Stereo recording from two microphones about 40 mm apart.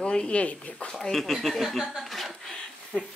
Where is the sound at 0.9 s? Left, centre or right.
Centre.